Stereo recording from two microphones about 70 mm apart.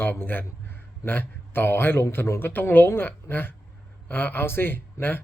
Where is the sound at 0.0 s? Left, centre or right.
Left.